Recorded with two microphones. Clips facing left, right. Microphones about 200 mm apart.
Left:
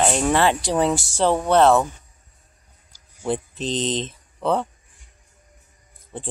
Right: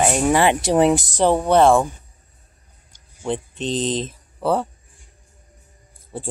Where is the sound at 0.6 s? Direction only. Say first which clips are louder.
Right 5 dB; 20° right (ahead or behind).